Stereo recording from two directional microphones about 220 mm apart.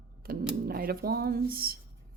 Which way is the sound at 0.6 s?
45° right (ahead or behind).